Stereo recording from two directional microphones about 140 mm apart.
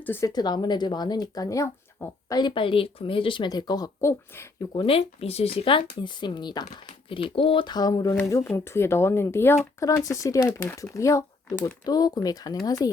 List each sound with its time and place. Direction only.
0.0 s speech: 20° left (ahead or behind)
2.4 s speech: 35° left (ahead or behind)
4.7 s speech: 40° left (ahead or behind)
8.1 s speech: 15° left (ahead or behind)